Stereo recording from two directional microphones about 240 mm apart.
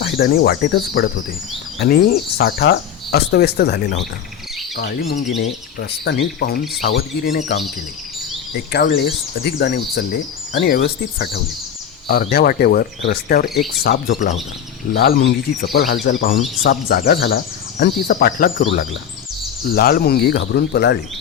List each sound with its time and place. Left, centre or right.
0.0 s speech: left
8.7 s speech: left
13.5 s speech: centre
13.8 s speech: left
19.7 s speech: left